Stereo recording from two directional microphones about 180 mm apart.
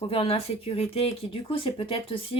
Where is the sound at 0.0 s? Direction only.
30° left (ahead or behind).